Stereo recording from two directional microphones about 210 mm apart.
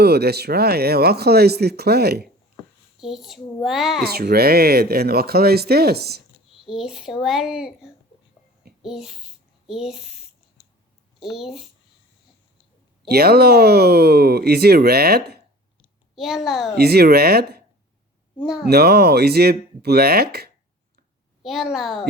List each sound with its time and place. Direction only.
0.0 s speech: 50° right (ahead or behind)
3.0 s a child's voice: centre (ahead or behind)
4.0 s speech: 45° right (ahead or behind)
6.5 s a child's voice: centre (ahead or behind)
8.8 s a sound: centre (ahead or behind)
11.2 s a child's voice: centre (ahead or behind)
13.0 s speech: 50° right (ahead or behind)
16.1 s a child's voice: centre (ahead or behind)
16.7 s speech: 50° right (ahead or behind)
18.6 s speech: 50° right (ahead or behind)
21.4 s a child's voice: centre (ahead or behind)